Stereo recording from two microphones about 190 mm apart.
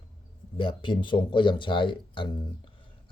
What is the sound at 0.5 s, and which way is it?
Speech, 25° left (ahead or behind).